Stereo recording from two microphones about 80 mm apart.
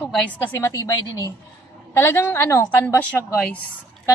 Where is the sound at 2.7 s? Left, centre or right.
Left.